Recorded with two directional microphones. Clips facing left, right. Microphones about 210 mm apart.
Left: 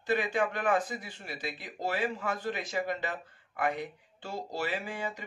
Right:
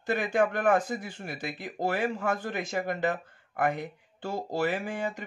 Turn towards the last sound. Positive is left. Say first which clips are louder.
# right 4 dB
turn(degrees=-50)  # may be behind; listen again after turning